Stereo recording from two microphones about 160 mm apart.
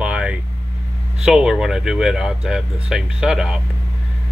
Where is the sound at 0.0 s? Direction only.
5° right (ahead or behind).